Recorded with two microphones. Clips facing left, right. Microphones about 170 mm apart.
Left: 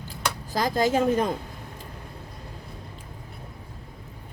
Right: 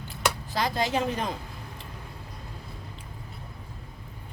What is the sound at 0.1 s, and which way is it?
Speech, 45° left (ahead or behind).